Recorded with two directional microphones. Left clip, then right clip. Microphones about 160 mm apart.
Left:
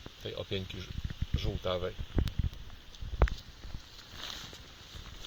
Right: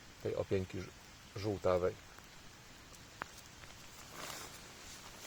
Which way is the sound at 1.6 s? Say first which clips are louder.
Right 2 dB; 35° right (ahead or behind).